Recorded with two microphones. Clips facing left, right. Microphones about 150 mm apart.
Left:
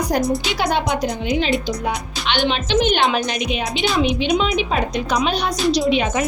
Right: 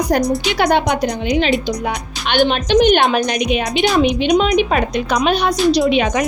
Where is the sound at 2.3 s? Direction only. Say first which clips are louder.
Right 5 dB; 50° right (ahead or behind).